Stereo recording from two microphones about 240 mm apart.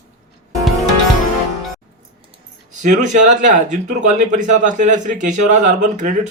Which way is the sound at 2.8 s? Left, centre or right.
Right.